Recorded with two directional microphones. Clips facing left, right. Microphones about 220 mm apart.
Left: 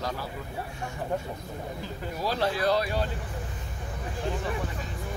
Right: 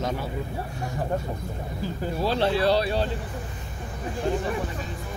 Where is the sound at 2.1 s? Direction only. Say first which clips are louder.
Right 4 dB; 30° right (ahead or behind).